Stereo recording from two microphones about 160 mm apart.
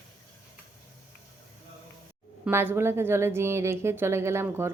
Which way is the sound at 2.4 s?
15° right (ahead or behind).